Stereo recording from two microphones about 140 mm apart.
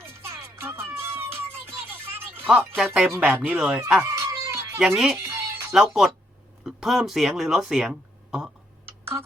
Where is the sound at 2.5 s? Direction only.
5° right (ahead or behind).